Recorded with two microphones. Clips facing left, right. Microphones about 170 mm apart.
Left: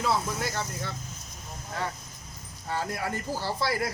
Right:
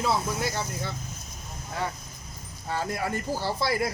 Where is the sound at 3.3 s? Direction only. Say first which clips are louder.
Right 1 dB; 15° right (ahead or behind).